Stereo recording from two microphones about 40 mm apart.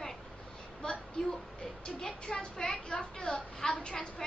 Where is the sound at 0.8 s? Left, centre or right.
Centre.